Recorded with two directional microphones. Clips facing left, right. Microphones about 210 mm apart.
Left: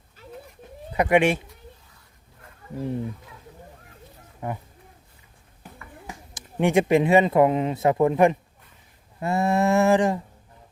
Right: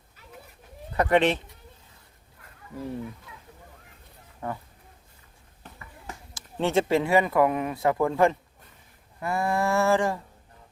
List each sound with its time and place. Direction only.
0.9 s speech: 10° left (ahead or behind)
4.4 s speech: 20° left (ahead or behind)
6.1 s speech: 15° left (ahead or behind)
9.2 s a sound: 25° left (ahead or behind)